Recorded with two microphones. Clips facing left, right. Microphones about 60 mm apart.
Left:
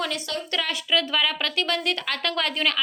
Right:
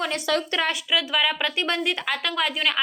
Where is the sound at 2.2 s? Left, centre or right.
Centre.